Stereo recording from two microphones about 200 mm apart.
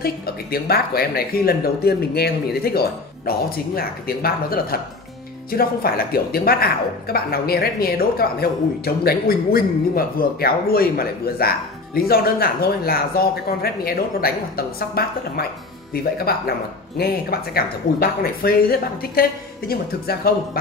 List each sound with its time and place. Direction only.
0.0 s a woman's voice: 50° left (ahead or behind)